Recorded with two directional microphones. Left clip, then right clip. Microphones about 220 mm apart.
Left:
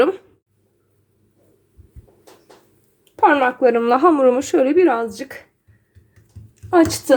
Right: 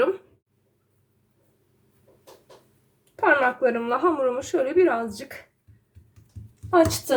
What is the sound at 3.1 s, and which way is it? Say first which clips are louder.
Speech: left 5 dB; 30° left (ahead or behind).